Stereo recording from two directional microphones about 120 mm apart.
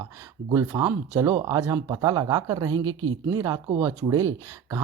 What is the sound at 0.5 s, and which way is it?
Speech, 30° right (ahead or behind).